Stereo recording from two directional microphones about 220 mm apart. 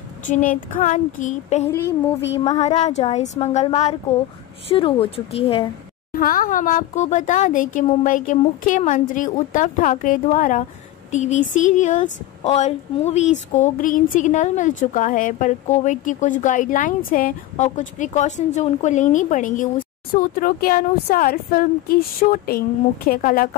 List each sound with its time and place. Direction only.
0.3 s speech: 35° left (ahead or behind)
1.7 s speech: 10° left (ahead or behind)
2.3 s speech: 30° left (ahead or behind)
6.1 s speech: 40° left (ahead or behind)